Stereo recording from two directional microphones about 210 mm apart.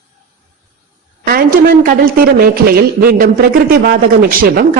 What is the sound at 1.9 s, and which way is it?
A man's voice, 45° right (ahead or behind).